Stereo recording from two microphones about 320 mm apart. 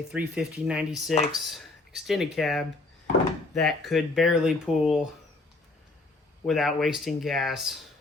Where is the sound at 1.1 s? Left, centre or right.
Left.